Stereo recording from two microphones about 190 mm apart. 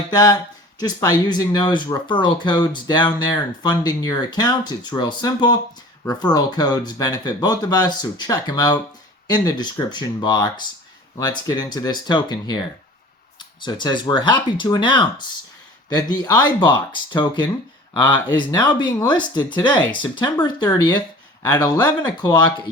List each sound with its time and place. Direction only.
0.1 s speech: 20° left (ahead or behind)